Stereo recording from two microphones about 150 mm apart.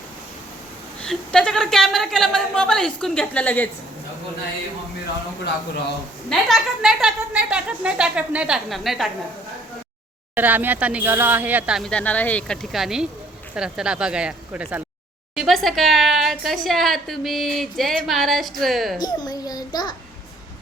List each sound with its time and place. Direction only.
1.0 s a woman's voice: 5° left (ahead or behind)
6.2 s a woman's voice: centre (ahead or behind)
10.3 s speech: 10° right (ahead or behind)
11.8 s a woman's voice: 5° left (ahead or behind); by 14.8 s 10° right (ahead or behind)
15.4 s a woman's voice: centre (ahead or behind)
18.9 s a child's voice: 25° left (ahead or behind)